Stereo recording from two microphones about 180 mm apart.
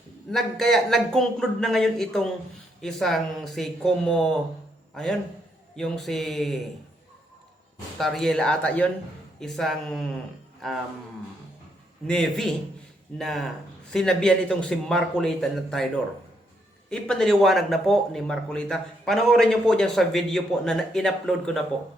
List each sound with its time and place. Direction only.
0.3 s speech: centre (ahead or behind)
5.7 s speech: centre (ahead or behind)
7.9 s speech: centre (ahead or behind)
12.0 s speech: 5° left (ahead or behind)
16.9 s speech: 5° left (ahead or behind)